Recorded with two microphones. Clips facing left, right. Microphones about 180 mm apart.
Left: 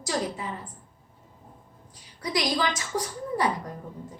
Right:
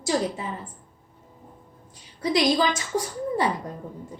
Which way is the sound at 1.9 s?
25° right (ahead or behind).